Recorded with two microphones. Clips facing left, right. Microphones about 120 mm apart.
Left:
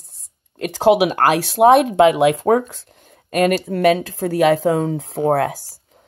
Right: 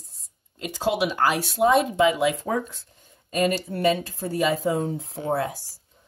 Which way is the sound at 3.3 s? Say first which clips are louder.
Left 7 dB; 70° left (ahead or behind).